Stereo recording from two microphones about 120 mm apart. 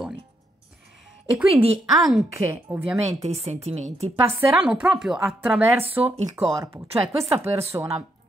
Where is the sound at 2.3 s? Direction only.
20° right (ahead or behind).